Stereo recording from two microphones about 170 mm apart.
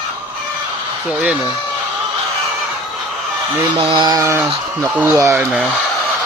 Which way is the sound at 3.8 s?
30° right (ahead or behind).